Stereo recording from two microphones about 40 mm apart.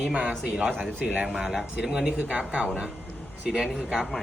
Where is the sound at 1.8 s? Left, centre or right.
Centre.